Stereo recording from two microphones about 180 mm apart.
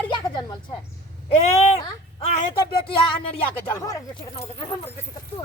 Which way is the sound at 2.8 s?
30° left (ahead or behind).